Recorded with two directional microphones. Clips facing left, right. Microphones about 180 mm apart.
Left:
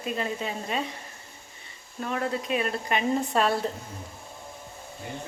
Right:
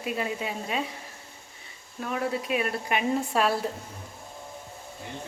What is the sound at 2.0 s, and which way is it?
A woman's voice, 5° right (ahead or behind).